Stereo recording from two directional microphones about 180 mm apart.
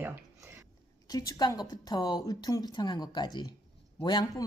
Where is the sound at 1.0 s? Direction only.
20° left (ahead or behind).